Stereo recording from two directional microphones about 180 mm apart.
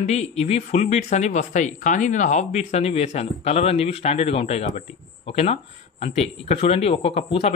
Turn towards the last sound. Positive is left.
turn(degrees=35)  # may be behind; listen again after turning